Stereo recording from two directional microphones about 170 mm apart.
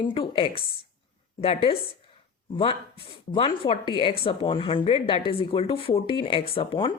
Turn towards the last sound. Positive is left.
turn(degrees=30)  # may be behind; listen again after turning